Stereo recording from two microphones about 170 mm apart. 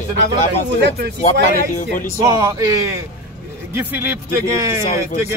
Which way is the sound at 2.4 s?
15° right (ahead or behind).